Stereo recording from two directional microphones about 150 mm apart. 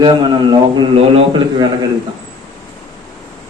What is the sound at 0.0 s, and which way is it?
A man's voice, 30° right (ahead or behind).